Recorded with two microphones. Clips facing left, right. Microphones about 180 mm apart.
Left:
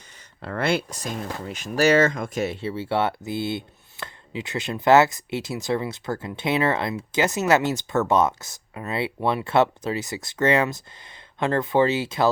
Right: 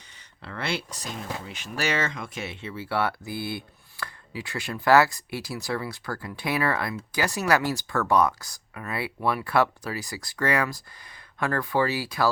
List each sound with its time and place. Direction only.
0.4 s speech: 50° left (ahead or behind); by 12.3 s 25° left (ahead or behind)